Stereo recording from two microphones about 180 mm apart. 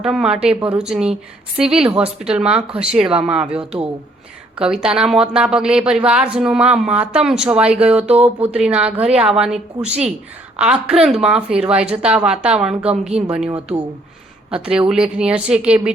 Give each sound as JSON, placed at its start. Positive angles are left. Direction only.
{"t": 0.0, "sound": "a woman's voice", "side_deg": -5}
{"t": 12.9, "sound": "a woman's voice", "side_deg": -35}
{"t": 14.5, "sound": "a woman's voice", "side_deg": -5}